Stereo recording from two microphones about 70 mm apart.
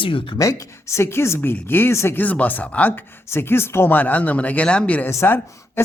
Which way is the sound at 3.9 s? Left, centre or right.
Left.